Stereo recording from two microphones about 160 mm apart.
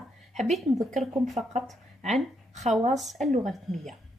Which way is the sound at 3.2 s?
50° right (ahead or behind).